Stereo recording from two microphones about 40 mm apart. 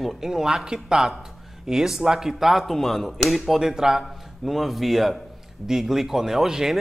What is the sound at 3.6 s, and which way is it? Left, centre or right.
A man's voice, centre.